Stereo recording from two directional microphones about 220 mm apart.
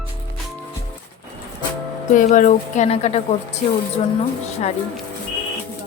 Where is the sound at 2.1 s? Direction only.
35° left (ahead or behind).